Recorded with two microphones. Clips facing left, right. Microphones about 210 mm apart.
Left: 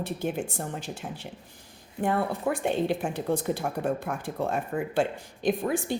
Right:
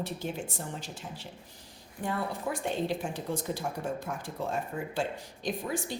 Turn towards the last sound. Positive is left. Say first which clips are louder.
# left 7 dB
turn(degrees=55)  # may be behind; listen again after turning